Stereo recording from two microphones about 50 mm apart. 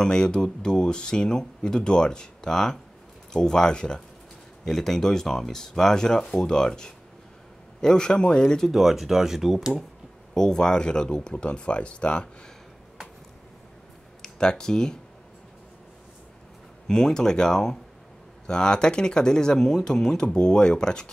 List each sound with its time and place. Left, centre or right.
0.0 s speech: centre
8.6 s speech: centre
10.3 s speech: centre
14.2 s speech: centre
16.8 s speech: centre